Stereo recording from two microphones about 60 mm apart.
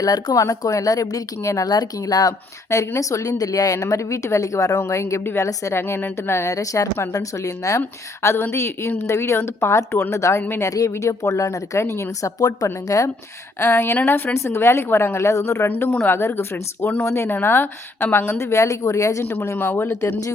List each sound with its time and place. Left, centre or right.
0.0 s speech: left
2.6 s speech: left
5.2 s a woman's voice: left
8.2 s a woman's voice: left
10.1 s speech: left
12.4 s speech: left
12.6 s speech: left
13.6 s a woman's voice: left
19.2 s speech: left